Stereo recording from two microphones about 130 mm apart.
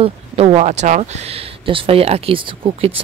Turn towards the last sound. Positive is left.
turn(degrees=-45)  # may be behind; listen again after turning